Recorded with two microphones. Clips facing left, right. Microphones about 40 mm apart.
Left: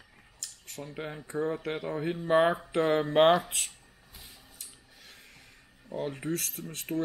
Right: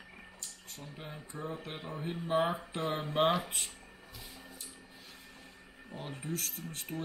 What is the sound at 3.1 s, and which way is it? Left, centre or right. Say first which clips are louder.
Speech: left 7 dB; left.